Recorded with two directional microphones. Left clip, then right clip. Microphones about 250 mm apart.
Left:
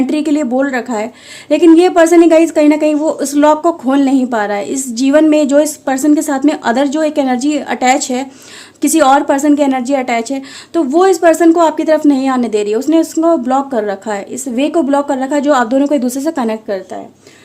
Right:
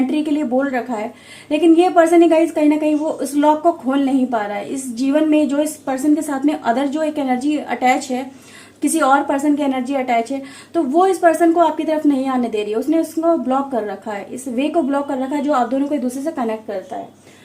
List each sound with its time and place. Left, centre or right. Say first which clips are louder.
0.1 s a woman's voice: left 5 dB; left